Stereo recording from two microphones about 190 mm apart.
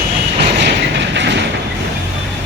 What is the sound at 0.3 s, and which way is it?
Train, 65° right (ahead or behind).